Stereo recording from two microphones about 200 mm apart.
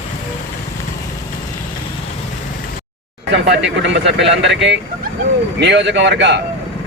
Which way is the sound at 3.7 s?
65° right (ahead or behind).